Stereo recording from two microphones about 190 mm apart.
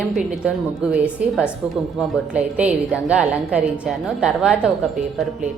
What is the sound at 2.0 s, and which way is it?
A woman's voice, 5° right (ahead or behind).